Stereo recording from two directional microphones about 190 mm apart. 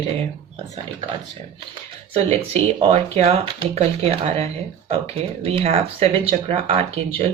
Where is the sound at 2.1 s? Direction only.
35° right (ahead or behind).